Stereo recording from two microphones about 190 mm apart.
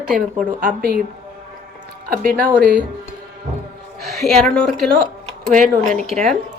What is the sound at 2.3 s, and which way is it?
Speech, 10° left (ahead or behind).